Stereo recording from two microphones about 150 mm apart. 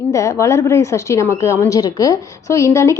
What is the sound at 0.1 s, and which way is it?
A woman's voice, 20° left (ahead or behind).